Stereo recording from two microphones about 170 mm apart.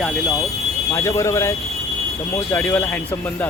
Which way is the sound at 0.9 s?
20° left (ahead or behind).